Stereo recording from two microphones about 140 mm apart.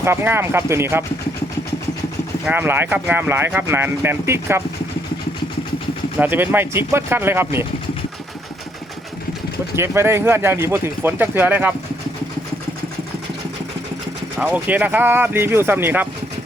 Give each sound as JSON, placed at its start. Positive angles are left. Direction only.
{"t": 0.0, "sound": "speech", "side_deg": -15}
{"t": 2.5, "sound": "speech", "side_deg": -15}
{"t": 6.1, "sound": "speech", "side_deg": -15}
{"t": 9.7, "sound": "speech", "side_deg": -20}
{"t": 14.3, "sound": "speech", "side_deg": -10}